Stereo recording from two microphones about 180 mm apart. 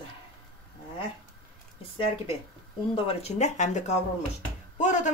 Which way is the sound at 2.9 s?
35° left (ahead or behind).